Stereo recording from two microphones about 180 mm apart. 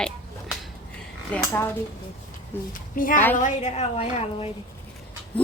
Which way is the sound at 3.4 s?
40° left (ahead or behind).